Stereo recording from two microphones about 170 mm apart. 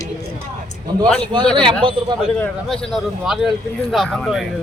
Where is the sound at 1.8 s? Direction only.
30° right (ahead or behind).